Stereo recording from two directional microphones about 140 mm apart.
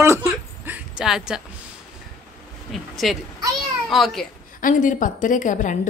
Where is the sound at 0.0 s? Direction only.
20° right (ahead or behind); by 1.4 s 5° right (ahead or behind).